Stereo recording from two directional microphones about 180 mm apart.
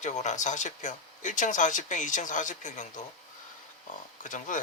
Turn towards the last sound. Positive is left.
turn(degrees=45)  # may be behind; listen again after turning